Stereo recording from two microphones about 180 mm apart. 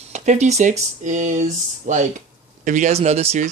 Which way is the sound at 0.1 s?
40° right (ahead or behind).